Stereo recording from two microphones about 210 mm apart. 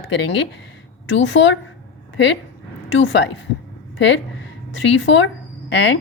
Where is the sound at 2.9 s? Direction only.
65° left (ahead or behind).